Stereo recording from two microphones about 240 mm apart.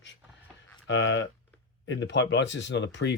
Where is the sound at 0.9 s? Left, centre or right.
Left.